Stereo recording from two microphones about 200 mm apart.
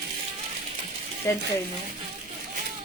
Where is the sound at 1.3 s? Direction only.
10° left (ahead or behind).